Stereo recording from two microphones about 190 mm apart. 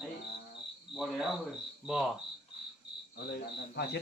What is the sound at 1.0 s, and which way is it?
Speech, centre (ahead or behind).